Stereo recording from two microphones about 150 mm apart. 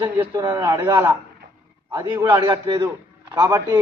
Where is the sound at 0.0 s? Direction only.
20° right (ahead or behind).